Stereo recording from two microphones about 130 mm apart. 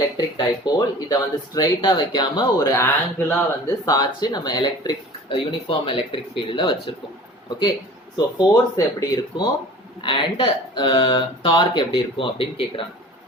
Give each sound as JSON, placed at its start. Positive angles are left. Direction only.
{"t": 0.2, "sound": "speech", "side_deg": 30}
{"t": 3.8, "sound": "speech", "side_deg": 30}
{"t": 8.1, "sound": "speech", "side_deg": 30}